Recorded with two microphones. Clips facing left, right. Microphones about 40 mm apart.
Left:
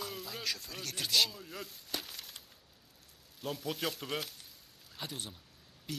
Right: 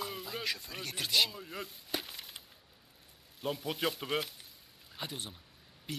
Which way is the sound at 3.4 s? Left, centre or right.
Centre.